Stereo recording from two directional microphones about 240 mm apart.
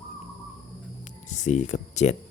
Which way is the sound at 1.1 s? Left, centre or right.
Left.